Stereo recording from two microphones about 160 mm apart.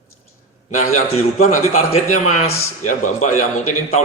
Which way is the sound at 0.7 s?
50° left (ahead or behind).